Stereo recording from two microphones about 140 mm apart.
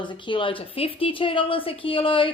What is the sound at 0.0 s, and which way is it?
Speech, 35° left (ahead or behind).